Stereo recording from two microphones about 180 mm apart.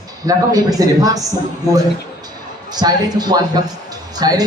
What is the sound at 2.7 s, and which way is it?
A man's voice, 20° right (ahead or behind).